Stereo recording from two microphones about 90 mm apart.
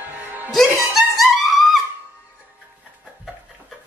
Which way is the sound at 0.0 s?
20° right (ahead or behind).